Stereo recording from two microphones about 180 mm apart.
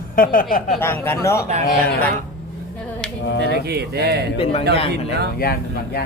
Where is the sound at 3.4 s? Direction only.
65° right (ahead or behind).